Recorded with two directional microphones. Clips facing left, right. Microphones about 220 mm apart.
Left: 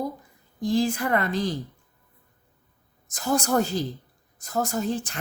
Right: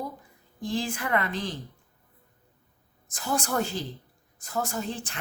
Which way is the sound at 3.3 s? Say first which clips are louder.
Left 5 dB; 40° left (ahead or behind).